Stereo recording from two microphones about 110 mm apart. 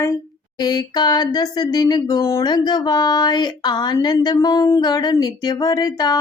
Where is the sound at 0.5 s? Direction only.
40° left (ahead or behind).